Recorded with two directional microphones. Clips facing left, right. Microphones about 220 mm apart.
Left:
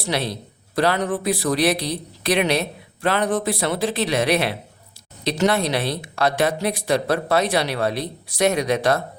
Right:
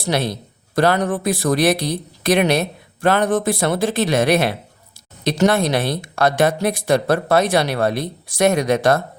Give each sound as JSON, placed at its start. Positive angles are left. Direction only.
{"t": 0.0, "sound": "speech", "side_deg": -45}